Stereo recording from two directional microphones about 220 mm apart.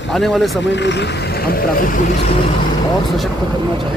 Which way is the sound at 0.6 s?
55° left (ahead or behind).